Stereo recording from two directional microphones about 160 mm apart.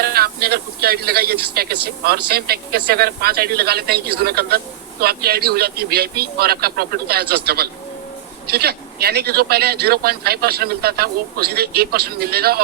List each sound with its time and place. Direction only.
0.0 s speech: 75° right (ahead or behind)